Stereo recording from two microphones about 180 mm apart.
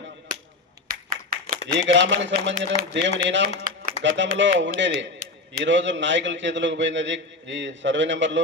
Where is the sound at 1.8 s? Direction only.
90° right.